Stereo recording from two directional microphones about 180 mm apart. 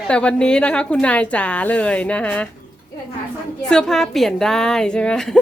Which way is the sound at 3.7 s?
5° left (ahead or behind).